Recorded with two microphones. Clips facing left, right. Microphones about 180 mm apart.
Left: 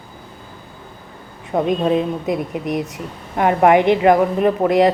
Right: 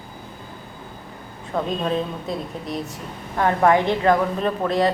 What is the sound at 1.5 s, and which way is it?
A woman's voice, 20° left (ahead or behind).